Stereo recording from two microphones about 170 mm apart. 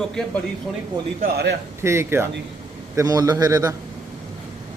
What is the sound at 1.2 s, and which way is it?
Speech, 75° right (ahead or behind).